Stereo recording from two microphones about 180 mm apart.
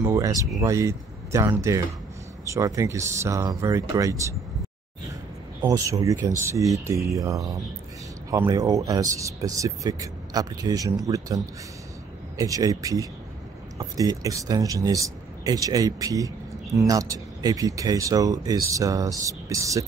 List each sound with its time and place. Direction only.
0.0 s a sound: 15° right (ahead or behind)
0.6 s speech: 15° right (ahead or behind)
5.6 s speech: 20° right (ahead or behind)
12.4 s speech: 20° right (ahead or behind)